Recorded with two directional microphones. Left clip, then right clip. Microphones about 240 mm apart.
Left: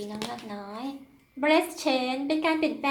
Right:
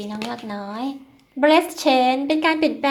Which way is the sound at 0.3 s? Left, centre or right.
Right.